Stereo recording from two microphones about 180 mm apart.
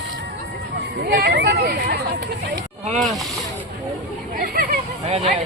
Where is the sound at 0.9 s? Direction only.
55° right (ahead or behind).